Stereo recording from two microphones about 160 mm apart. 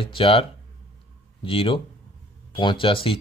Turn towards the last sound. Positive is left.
turn(degrees=35)  # may be behind; listen again after turning